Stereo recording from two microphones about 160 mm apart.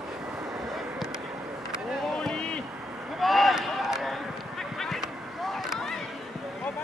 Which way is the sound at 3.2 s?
Centre (ahead or behind).